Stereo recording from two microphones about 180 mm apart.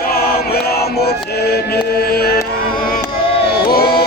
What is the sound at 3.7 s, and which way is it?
Music, 60° left (ahead or behind).